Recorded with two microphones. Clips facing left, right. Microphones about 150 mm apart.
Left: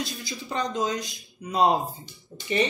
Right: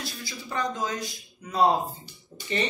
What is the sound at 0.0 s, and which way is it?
Speech, 20° left (ahead or behind).